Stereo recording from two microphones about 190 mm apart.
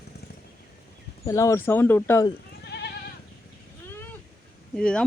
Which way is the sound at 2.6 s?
60° left (ahead or behind).